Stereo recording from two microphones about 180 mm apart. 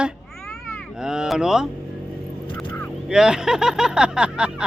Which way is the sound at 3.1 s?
5° right (ahead or behind).